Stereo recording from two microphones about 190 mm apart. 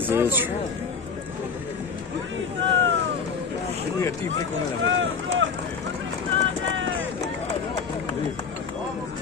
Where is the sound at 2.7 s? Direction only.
70° right (ahead or behind).